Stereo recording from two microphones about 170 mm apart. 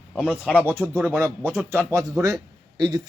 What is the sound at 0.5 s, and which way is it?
A man's voice, 15° right (ahead or behind).